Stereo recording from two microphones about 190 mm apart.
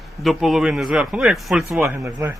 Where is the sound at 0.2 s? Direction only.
Centre (ahead or behind).